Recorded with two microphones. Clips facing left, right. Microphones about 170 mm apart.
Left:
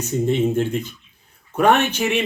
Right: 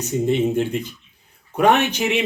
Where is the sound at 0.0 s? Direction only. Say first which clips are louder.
Even; 15° right (ahead or behind).